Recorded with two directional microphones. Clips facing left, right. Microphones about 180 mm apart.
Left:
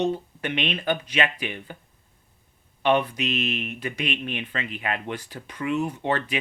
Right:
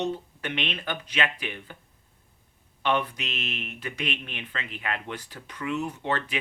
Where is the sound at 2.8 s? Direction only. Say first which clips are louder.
Left 5 dB; 15° left (ahead or behind).